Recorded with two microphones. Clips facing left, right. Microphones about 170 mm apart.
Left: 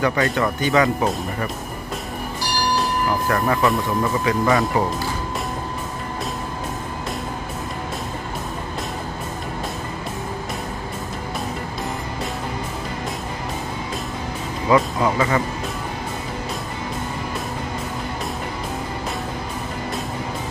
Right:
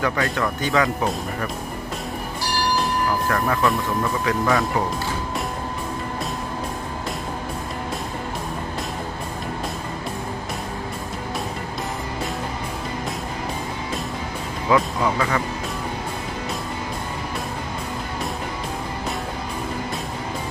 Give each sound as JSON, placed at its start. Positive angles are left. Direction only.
{"t": 0.0, "sound": "speech", "side_deg": 0}
{"t": 2.8, "sound": "speech", "side_deg": 5}
{"t": 14.7, "sound": "speech", "side_deg": 0}